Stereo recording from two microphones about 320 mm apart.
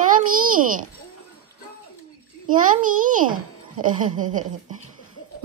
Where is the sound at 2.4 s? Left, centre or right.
Right.